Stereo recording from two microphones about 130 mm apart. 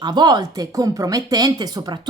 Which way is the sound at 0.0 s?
30° right (ahead or behind).